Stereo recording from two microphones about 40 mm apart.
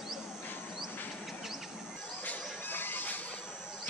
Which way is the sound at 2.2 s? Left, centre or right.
Left.